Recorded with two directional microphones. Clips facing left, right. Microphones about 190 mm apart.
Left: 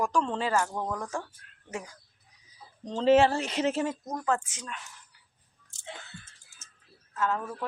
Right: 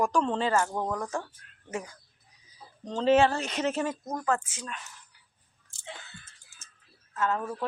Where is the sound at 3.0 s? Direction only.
25° left (ahead or behind).